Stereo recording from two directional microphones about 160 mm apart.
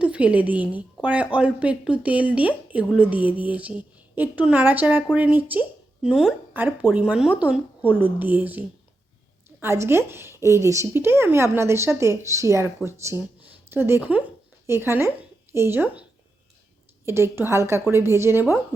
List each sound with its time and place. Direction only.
0.0 s a woman's voice: 10° right (ahead or behind)
17.1 s a woman's voice: 15° right (ahead or behind)